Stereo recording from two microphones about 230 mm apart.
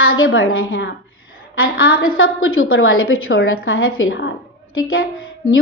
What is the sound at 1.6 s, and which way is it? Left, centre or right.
Speech, left.